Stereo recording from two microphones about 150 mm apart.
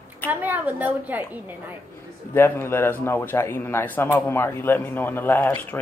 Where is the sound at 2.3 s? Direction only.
15° left (ahead or behind).